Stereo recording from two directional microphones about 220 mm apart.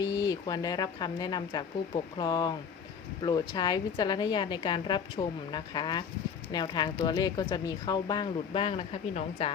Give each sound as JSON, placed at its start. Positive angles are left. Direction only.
{"t": 0.0, "sound": "speech", "side_deg": 15}